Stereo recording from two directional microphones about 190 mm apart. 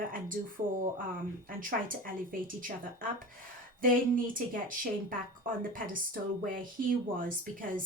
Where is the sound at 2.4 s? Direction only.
45° right (ahead or behind).